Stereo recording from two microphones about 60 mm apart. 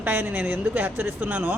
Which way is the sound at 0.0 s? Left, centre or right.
Right.